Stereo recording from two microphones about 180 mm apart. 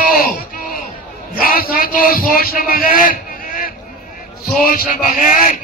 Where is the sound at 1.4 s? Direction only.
55° left (ahead or behind).